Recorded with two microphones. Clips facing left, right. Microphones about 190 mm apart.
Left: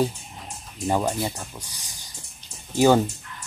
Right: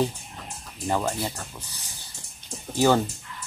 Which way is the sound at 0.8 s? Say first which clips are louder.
Left 3 dB; 15° left (ahead or behind).